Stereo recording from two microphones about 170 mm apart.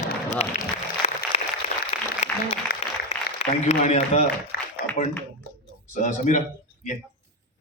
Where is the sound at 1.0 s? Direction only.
35° left (ahead or behind).